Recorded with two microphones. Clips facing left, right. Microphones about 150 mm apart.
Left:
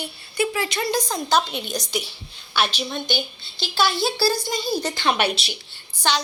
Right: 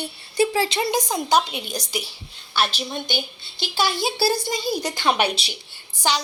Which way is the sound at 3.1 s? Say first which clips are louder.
Left 2 dB; 55° right (ahead or behind).